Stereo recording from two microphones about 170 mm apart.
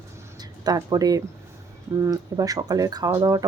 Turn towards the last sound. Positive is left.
turn(degrees=-20)  # may be behind; listen again after turning